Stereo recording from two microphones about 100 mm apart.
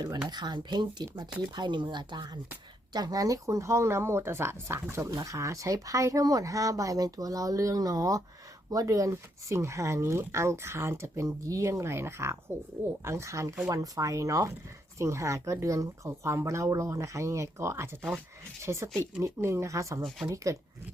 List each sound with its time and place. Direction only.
0.3 s speech: 45° right (ahead or behind)